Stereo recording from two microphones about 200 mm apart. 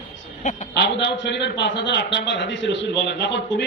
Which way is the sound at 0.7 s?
60° left (ahead or behind).